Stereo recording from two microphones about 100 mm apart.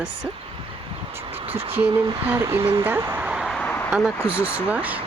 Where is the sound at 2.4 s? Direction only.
25° right (ahead or behind); by 3.5 s 10° right (ahead or behind).